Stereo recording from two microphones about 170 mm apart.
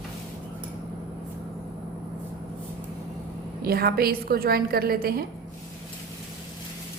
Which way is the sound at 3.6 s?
65° right (ahead or behind).